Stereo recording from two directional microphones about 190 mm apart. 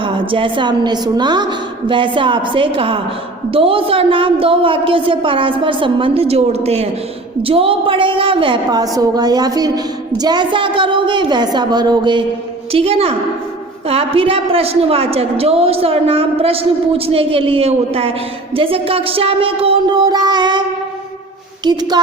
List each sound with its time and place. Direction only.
0.0 s a woman's voice: 25° right (ahead or behind)